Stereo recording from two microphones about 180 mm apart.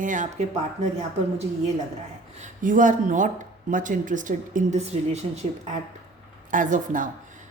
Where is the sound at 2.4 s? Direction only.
45° right (ahead or behind).